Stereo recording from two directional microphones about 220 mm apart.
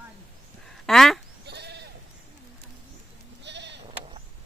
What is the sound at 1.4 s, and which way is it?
Sheep, 50° right (ahead or behind).